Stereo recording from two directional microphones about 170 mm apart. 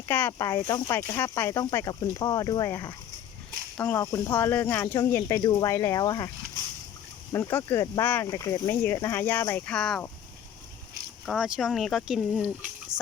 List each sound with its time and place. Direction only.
0.1 s speech: 15° left (ahead or behind)
7.3 s speech: 15° left (ahead or behind)
11.3 s speech: 5° right (ahead or behind)
12.9 s a sound: 25° right (ahead or behind)